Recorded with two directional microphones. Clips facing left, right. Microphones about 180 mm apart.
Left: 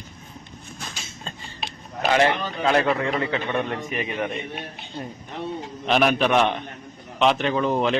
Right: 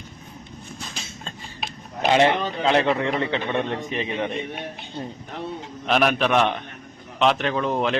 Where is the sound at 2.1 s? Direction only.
20° right (ahead or behind).